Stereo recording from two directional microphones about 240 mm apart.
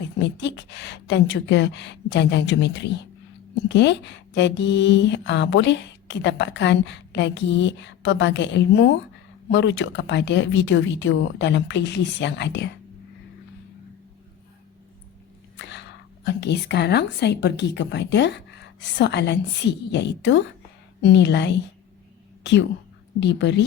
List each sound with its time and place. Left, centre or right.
0.2 s speech: left
16.2 s speech: left
23.2 s speech: left